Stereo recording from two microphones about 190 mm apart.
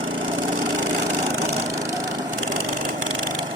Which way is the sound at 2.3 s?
45° right (ahead or behind).